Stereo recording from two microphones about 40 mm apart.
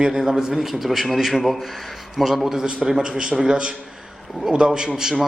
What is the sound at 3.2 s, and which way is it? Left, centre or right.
Mantra, centre.